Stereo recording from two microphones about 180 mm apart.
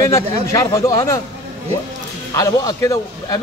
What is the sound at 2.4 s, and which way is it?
A man's voice, 20° left (ahead or behind).